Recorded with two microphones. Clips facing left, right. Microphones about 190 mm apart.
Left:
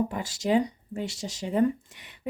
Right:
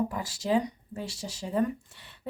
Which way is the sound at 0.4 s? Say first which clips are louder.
Left 3 dB; 20° left (ahead or behind).